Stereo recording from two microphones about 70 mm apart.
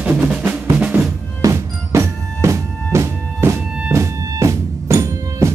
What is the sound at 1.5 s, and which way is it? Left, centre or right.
Music, right.